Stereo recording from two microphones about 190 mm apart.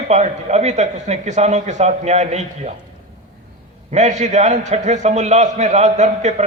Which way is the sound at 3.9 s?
40° right (ahead or behind).